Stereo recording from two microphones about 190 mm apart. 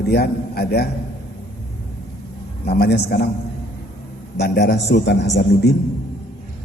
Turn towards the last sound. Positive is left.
turn(degrees=60)  # may be behind; listen again after turning